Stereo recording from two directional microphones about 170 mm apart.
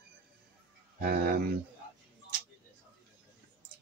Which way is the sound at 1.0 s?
65° right (ahead or behind).